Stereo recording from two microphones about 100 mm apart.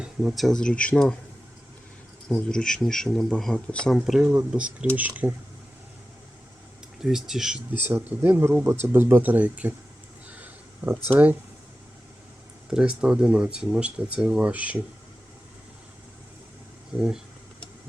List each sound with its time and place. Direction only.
0.0 s speech: 5° right (ahead or behind); by 1.1 s 10° left (ahead or behind)
2.3 s speech: 5° left (ahead or behind)
3.9 s speech: 5° right (ahead or behind)
7.0 s speech: 5° right (ahead or behind)
7.7 s speech: 15° right (ahead or behind)
10.2 s a sound: 15° right (ahead or behind)
12.7 s speech: 5° right (ahead or behind)